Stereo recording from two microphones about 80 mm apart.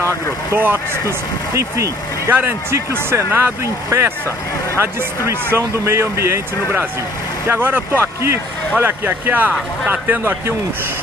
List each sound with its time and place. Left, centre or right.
0.0 s speech: right
7.4 s speech: right